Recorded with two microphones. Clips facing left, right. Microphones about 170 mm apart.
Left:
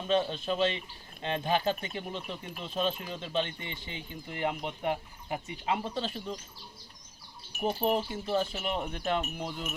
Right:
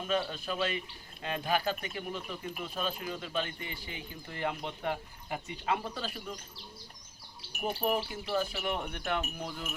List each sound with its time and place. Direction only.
0.1 s speech: 25° left (ahead or behind)
7.6 s speech: 25° left (ahead or behind)